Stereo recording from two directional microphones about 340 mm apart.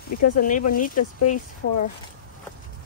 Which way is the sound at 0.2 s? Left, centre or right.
Left.